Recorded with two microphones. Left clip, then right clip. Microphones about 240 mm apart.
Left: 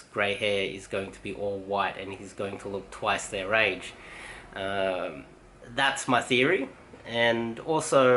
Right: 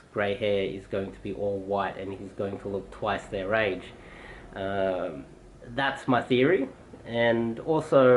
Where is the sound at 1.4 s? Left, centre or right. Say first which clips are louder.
Right 2 dB; right.